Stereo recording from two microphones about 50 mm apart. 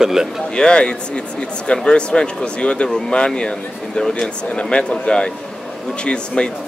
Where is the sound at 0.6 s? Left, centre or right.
Centre.